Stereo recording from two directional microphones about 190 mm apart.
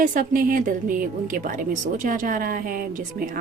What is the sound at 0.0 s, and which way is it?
A woman's voice, 45° right (ahead or behind).